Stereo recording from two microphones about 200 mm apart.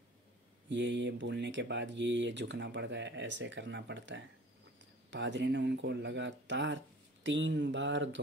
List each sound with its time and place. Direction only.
0.7 s speech: 60° right (ahead or behind)
7.2 s mantra: 65° right (ahead or behind)